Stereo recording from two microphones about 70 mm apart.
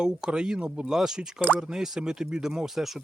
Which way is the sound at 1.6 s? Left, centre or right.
Centre.